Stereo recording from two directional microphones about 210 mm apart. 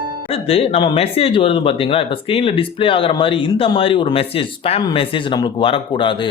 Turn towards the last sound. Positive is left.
turn(degrees=25)  # may be behind; listen again after turning